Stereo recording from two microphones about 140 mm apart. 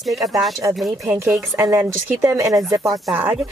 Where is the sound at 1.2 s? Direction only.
20° right (ahead or behind).